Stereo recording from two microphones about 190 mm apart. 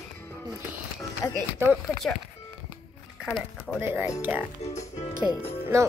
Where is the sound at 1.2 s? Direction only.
15° left (ahead or behind).